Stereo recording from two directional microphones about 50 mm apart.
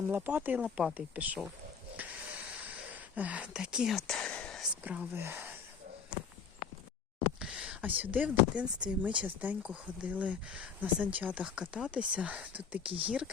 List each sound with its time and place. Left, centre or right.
0.1 s speech: right
0.5 s speech: right
2.0 s a sound: right
3.5 s speech: centre
4.0 s speech: centre
4.8 s speech: right
5.1 s speech: right
7.3 s a sound: centre
7.8 s speech: right
9.2 s speech: right
11.4 s speech: right